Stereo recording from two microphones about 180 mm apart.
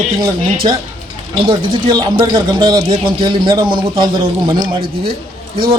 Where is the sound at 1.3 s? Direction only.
25° right (ahead or behind).